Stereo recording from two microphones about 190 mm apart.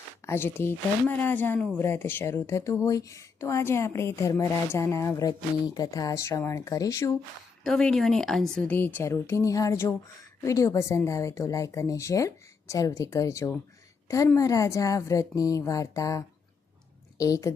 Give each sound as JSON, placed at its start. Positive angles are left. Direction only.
{"t": 0.3, "sound": "speech", "side_deg": 10}
{"t": 7.6, "sound": "speech", "side_deg": 5}